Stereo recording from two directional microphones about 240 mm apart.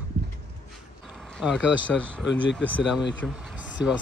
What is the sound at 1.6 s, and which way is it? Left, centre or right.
Speech, left.